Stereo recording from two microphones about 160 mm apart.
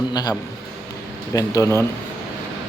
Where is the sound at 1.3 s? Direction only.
20° left (ahead or behind).